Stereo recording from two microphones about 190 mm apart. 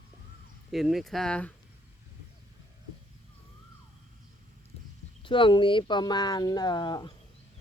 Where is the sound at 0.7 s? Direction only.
Centre (ahead or behind).